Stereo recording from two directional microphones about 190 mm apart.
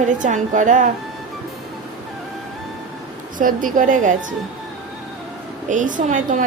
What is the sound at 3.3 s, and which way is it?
A woman's voice, 45° right (ahead or behind).